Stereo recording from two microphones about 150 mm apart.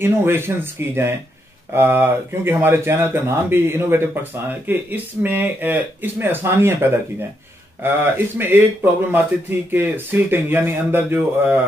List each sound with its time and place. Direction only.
0.0 s speech: 15° right (ahead or behind)